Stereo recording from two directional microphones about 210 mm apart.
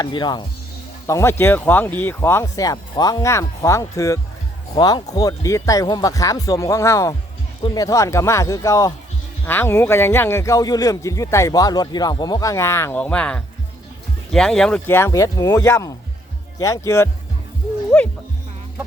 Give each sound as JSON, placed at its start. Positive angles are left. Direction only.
{"t": 0.0, "sound": "speech", "side_deg": 20}
{"t": 17.9, "sound": "music", "side_deg": 5}